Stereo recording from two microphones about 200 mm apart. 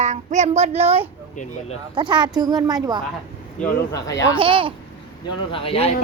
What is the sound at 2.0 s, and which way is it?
Speech, 20° right (ahead or behind).